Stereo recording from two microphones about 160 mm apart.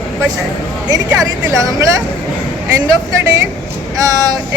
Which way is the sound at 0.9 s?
20° right (ahead or behind).